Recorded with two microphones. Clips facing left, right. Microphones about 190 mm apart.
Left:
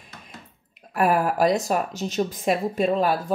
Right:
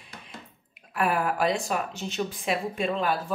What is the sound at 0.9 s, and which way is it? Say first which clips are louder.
Speech: left 5 dB; 40° left (ahead or behind).